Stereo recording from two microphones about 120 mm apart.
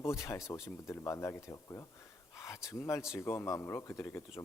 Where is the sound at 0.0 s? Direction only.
25° left (ahead or behind).